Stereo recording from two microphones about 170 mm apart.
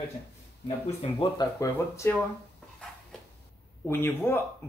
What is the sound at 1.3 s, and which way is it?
Speech, 15° left (ahead or behind).